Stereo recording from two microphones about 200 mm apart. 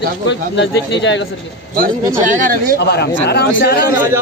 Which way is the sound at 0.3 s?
60° left (ahead or behind).